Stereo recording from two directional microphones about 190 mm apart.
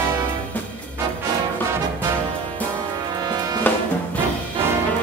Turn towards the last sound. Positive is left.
turn(degrees=10)  # may be behind; listen again after turning